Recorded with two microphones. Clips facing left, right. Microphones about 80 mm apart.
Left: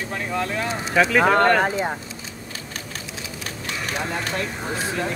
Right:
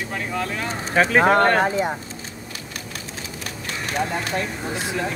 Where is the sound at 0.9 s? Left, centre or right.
Right.